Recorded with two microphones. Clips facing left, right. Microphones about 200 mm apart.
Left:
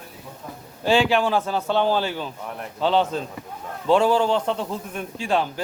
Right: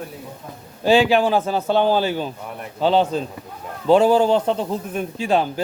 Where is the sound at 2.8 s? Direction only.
35° right (ahead or behind).